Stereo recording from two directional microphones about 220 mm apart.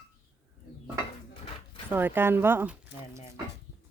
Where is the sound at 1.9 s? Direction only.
10° right (ahead or behind).